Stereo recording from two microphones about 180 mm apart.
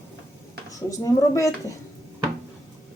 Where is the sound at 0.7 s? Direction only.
20° left (ahead or behind).